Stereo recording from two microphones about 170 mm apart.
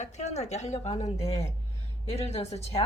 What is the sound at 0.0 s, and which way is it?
Speech, 45° left (ahead or behind).